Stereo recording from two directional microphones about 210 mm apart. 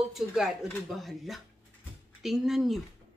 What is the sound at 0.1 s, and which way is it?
Speech, centre (ahead or behind).